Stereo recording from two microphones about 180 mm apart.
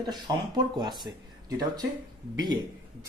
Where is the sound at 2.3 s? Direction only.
25° right (ahead or behind).